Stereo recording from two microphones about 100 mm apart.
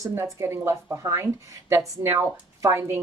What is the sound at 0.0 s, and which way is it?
Speech, 25° right (ahead or behind).